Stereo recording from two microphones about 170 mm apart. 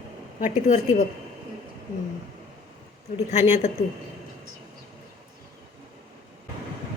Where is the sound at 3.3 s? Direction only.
40° left (ahead or behind).